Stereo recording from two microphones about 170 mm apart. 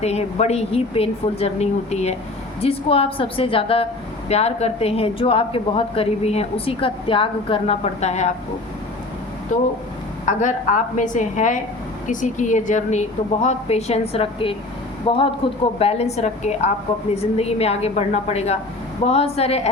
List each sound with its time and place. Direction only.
0.0 s a woman's voice: 40° left (ahead or behind)
10.2 s a woman's voice: 45° left (ahead or behind)